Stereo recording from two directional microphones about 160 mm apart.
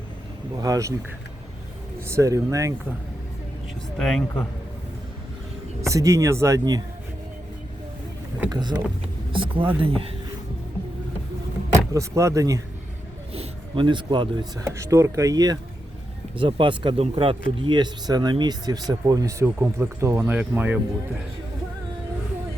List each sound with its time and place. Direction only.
0.5 s speech: 20° right (ahead or behind)
2.0 s speech: 20° right (ahead or behind)
3.9 s speech: 5° left (ahead or behind)
5.8 s speech: 20° right (ahead or behind)
8.4 s speech: 25° right (ahead or behind)
11.9 s speech: 20° right (ahead or behind)
13.3 s a man's voice: 35° right (ahead or behind)
14.6 s speech: 15° right (ahead or behind)